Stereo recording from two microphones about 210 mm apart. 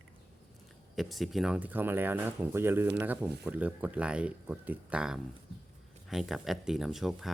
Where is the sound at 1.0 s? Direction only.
Centre (ahead or behind).